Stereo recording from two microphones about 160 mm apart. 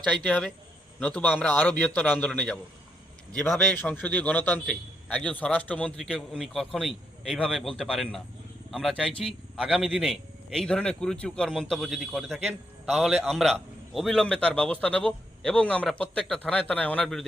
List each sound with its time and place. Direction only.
0.2 s a man's voice: 10° left (ahead or behind)
3.6 s a man's voice: 10° left (ahead or behind)